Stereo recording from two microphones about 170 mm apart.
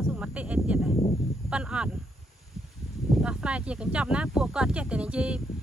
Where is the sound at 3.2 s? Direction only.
5° right (ahead or behind).